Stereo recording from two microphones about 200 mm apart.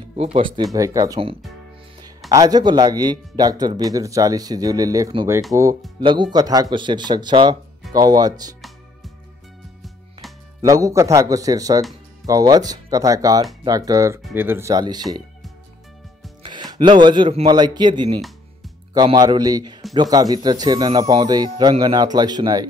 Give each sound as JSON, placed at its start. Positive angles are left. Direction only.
{"t": 0.1, "sound": "speech", "side_deg": -30}
{"t": 0.7, "sound": "speech", "side_deg": -15}
{"t": 2.3, "sound": "speech", "side_deg": -20}
{"t": 10.6, "sound": "speech", "side_deg": -15}
{"t": 16.4, "sound": "speech", "side_deg": -20}